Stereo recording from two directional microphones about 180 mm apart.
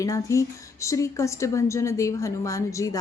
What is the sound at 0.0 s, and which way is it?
A woman's voice, 15° left (ahead or behind).